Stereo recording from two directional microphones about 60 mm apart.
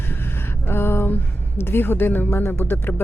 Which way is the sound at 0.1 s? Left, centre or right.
Left.